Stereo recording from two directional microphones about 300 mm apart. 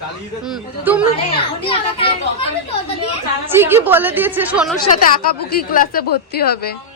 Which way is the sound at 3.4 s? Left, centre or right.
Centre.